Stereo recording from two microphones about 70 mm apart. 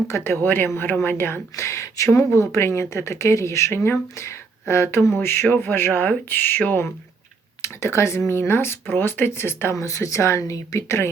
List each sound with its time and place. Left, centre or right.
0.1 s speech: left
1.5 s speech: left
7.6 s speech: left
9.7 s speech: left